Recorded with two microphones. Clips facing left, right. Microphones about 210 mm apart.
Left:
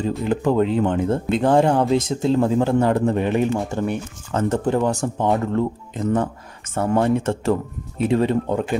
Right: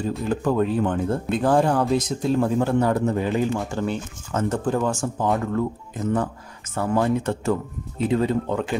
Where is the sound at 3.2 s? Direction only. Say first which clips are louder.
Left 3 dB; 65° left (ahead or behind).